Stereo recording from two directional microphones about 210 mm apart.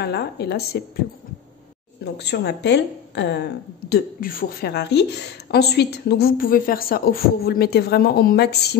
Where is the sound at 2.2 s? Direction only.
55° left (ahead or behind).